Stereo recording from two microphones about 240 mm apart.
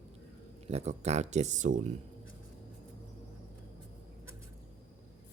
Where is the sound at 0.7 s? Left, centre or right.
Right.